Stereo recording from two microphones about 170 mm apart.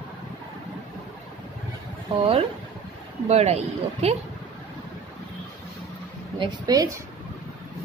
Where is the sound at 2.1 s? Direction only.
35° right (ahead or behind).